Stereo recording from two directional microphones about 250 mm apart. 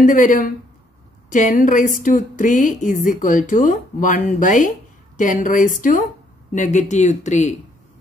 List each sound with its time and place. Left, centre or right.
0.0 s speech: left